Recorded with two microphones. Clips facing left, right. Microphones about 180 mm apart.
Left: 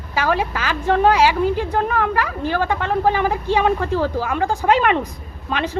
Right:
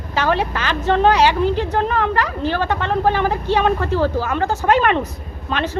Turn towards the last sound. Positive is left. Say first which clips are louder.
# right 1 dB
turn(degrees=10)  # may be behind; listen again after turning